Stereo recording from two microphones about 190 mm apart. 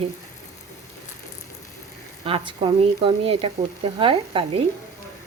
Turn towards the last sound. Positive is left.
turn(degrees=-25)  # may be behind; listen again after turning